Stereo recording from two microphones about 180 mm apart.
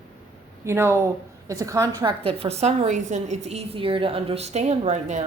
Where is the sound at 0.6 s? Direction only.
15° right (ahead or behind); by 5.2 s 40° right (ahead or behind).